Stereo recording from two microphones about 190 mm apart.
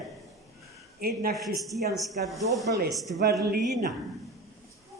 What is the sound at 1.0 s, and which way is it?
Speech, 55° right (ahead or behind).